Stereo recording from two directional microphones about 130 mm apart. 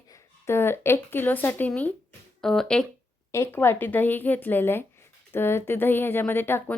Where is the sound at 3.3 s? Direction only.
20° left (ahead or behind).